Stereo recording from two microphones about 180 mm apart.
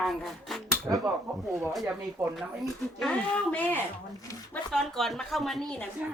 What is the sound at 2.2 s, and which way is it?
Speech, 15° right (ahead or behind).